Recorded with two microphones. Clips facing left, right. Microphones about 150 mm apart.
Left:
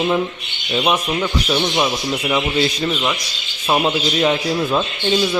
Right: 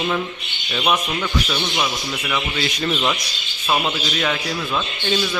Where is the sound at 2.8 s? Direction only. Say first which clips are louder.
Left 1 dB; centre (ahead or behind).